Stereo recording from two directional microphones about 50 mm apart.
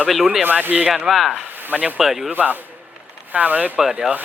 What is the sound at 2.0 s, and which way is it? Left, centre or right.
Speech, centre.